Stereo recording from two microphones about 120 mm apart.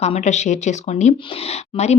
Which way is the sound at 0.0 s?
65° left (ahead or behind).